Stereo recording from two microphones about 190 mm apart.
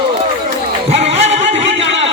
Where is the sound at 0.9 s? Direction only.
35° right (ahead or behind).